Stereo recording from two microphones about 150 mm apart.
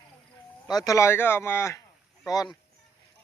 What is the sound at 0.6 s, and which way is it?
Speech, 25° left (ahead or behind).